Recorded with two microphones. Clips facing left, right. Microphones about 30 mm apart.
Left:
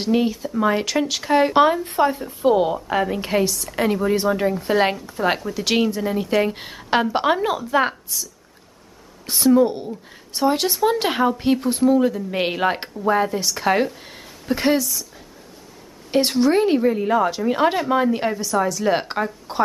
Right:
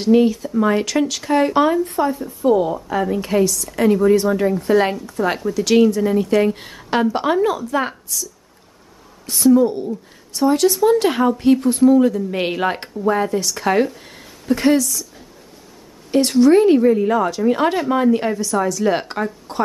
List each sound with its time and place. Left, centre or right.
0.0 s a woman's voice: centre
9.3 s a woman's voice: left